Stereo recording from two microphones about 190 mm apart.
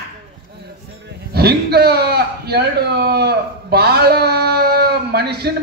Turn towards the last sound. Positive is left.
turn(degrees=-55)  # may be behind; listen again after turning